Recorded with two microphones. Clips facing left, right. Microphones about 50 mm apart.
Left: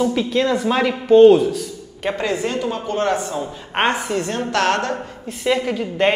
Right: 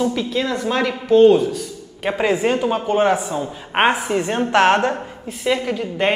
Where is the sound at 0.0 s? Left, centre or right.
Centre.